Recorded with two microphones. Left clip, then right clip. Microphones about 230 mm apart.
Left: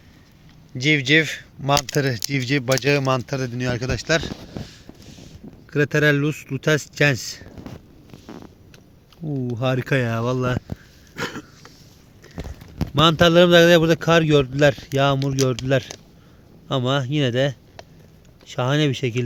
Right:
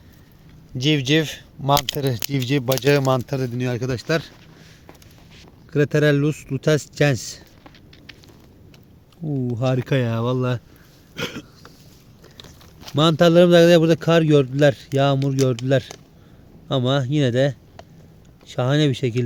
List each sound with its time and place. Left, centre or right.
0.8 s speech: centre
5.7 s speech: centre
9.2 s speech: centre
11.1 s a sound: left
13.0 s speech: centre